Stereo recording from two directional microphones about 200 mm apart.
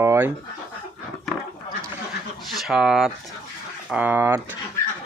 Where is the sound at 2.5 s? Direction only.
Centre (ahead or behind).